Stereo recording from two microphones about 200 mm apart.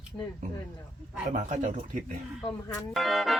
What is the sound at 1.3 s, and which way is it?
Speech, 40° right (ahead or behind).